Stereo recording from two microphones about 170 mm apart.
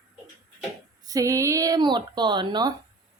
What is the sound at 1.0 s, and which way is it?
Speech, 20° right (ahead or behind).